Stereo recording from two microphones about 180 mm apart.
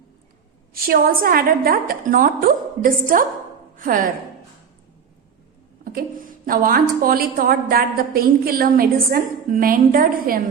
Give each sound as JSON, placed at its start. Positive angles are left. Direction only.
{"t": 0.7, "sound": "a woman's voice", "side_deg": -55}
{"t": 5.8, "sound": "a woman's voice", "side_deg": -50}